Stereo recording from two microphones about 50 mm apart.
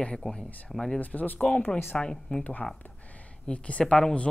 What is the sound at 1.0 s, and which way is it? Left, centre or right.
Speech, left.